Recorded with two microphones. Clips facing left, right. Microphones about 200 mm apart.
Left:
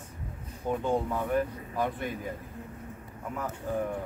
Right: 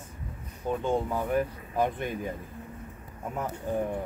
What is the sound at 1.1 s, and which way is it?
Speech, 15° right (ahead or behind).